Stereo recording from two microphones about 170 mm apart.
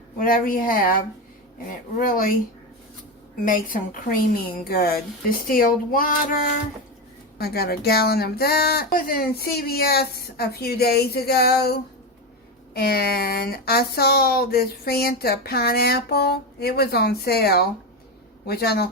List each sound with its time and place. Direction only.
0.2 s speech: 55° left (ahead or behind)
2.0 s speech: 55° left (ahead or behind)
3.4 s a woman's voice: 50° left (ahead or behind)
4.4 s speech: 60° left (ahead or behind)
7.3 s speech: 65° left (ahead or behind)